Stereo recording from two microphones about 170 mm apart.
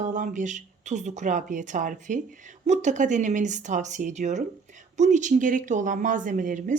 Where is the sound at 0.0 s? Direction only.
45° right (ahead or behind).